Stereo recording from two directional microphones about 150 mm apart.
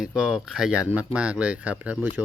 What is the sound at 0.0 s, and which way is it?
Speech, 5° right (ahead or behind).